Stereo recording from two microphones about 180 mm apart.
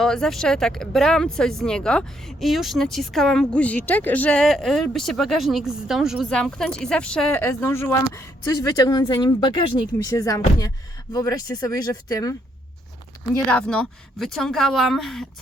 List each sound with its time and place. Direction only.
0.0 s speech: 5° left (ahead or behind); by 12.4 s 20° left (ahead or behind)
13.5 s speech: 5° left (ahead or behind)